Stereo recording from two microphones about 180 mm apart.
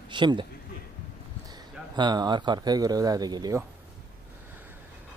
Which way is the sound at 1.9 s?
25° right (ahead or behind).